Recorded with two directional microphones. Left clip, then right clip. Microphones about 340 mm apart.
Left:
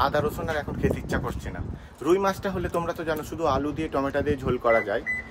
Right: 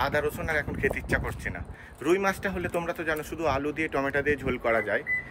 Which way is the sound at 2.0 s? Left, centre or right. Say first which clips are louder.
Left 2 dB; centre.